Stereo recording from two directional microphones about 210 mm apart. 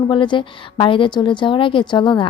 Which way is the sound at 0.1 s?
25° left (ahead or behind).